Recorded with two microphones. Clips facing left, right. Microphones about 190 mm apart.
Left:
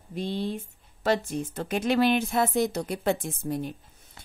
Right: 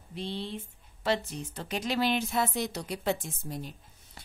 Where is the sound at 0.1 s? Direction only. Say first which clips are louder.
Left 6 dB; 45° left (ahead or behind).